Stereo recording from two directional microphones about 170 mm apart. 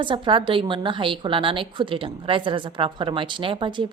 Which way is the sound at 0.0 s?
30° right (ahead or behind).